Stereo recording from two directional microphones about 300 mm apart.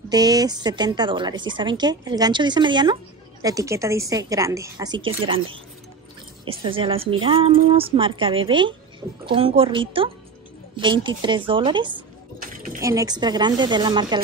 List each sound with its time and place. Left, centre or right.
0.1 s a woman's voice: centre
6.6 s a woman's voice: centre
12.4 s a sound: right
12.8 s a woman's voice: centre